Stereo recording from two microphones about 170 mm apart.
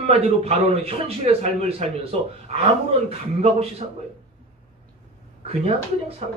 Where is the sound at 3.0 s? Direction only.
35° right (ahead or behind).